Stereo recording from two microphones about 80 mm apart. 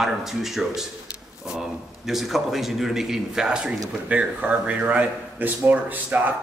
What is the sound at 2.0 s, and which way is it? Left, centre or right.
A man's voice, centre.